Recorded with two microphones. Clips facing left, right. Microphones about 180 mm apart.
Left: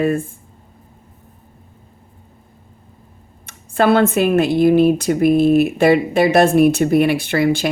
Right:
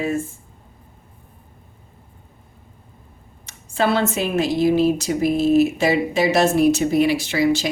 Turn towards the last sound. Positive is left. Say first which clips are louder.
# left 2 dB
turn(degrees=55)  # may be behind; listen again after turning